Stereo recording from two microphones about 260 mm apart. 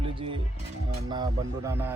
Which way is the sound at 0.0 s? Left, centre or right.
Right.